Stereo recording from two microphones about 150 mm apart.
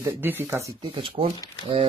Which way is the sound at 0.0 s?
15° right (ahead or behind).